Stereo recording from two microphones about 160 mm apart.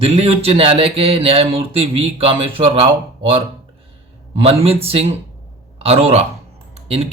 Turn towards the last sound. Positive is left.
turn(degrees=-40)  # may be behind; listen again after turning